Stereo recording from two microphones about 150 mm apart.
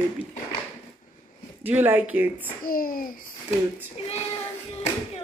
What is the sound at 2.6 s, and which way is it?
Speech, 75° left (ahead or behind).